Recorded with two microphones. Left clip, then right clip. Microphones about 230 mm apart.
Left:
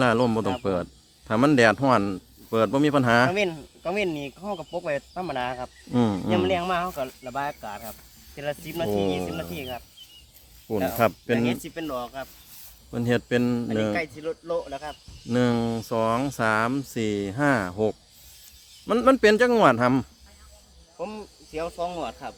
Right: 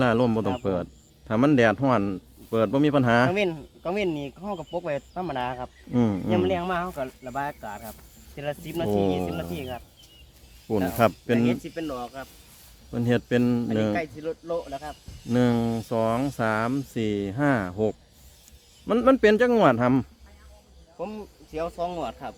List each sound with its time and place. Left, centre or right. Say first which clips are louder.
0.0 s speech: left 1 dB; centre
3.3 s speech: even; centre
5.9 s speech: left 1 dB; centre
10.9 s speech: right 1 dB; centre
11.6 s speech: left 1 dB; left
12.9 s speech: even; centre; by 14.9 s left
15.3 s speech: even; centre